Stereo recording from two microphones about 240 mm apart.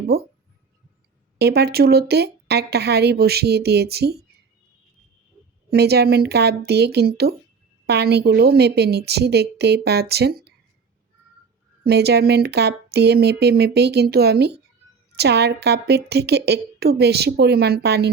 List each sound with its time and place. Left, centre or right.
0.1 s speech: right
1.4 s speech: right
5.7 s speech: right
11.8 s speech: right